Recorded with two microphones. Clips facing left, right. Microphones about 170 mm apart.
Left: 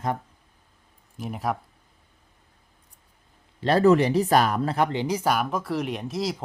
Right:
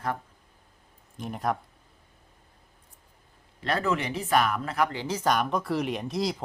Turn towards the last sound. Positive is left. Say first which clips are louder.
# even
turn(degrees=0)  # may be behind; listen again after turning